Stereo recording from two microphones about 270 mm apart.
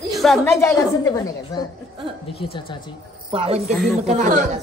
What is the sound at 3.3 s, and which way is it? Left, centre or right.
Speech, right.